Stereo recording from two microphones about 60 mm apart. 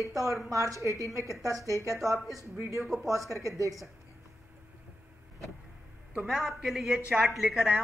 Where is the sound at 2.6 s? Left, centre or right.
Right.